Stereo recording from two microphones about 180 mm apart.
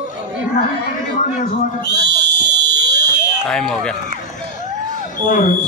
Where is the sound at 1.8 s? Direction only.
70° right (ahead or behind).